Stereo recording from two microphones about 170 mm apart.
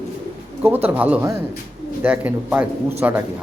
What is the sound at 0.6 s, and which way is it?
Speech, 10° right (ahead or behind).